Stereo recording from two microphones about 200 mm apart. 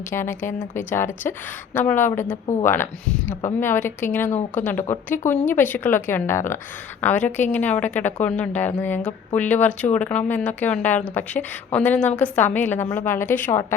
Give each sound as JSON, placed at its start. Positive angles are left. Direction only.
{"t": 0.1, "sound": "a woman's voice", "side_deg": 10}
{"t": 4.3, "sound": "speech", "side_deg": 35}
{"t": 4.6, "sound": "a woman's voice", "side_deg": 10}